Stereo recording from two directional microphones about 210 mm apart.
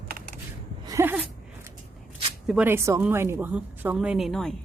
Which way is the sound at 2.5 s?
10° right (ahead or behind).